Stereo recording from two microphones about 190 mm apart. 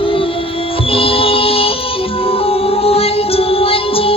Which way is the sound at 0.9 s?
30° left (ahead or behind).